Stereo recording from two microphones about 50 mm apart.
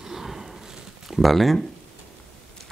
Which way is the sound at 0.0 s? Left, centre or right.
Centre.